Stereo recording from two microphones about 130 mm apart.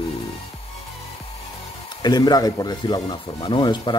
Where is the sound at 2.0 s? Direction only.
30° left (ahead or behind).